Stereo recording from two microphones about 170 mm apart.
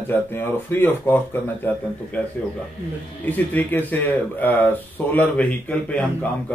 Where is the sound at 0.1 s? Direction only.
10° left (ahead or behind).